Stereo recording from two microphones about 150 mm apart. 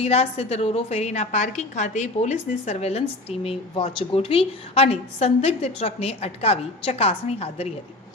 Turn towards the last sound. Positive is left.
turn(degrees=40)  # may be behind; listen again after turning